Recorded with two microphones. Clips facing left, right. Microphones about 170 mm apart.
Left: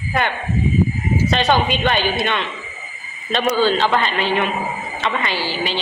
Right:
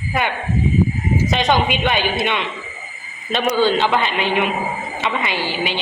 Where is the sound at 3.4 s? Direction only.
15° right (ahead or behind).